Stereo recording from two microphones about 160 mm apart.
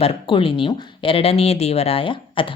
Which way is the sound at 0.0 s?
35° left (ahead or behind).